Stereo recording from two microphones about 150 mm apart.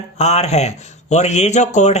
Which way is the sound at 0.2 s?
45° left (ahead or behind).